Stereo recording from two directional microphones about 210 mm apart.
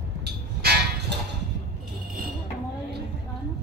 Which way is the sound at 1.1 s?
55° right (ahead or behind).